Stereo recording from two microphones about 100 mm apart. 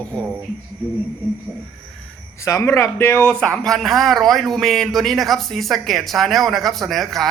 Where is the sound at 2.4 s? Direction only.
25° left (ahead or behind).